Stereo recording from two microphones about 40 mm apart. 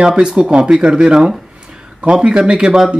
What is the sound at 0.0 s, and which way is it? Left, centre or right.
Speech, right.